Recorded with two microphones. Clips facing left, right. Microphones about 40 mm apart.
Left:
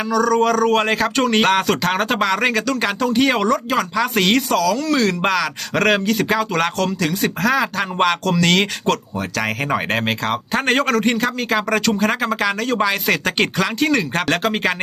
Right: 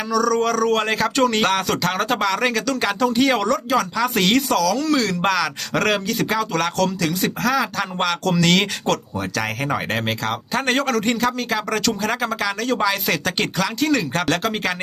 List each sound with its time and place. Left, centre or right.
0.1 s speech: centre
8.3 s speech: centre